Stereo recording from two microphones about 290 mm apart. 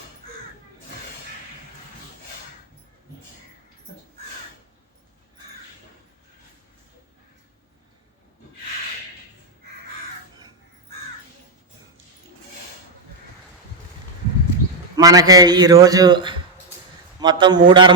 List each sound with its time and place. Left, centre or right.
14.9 s a man's voice: centre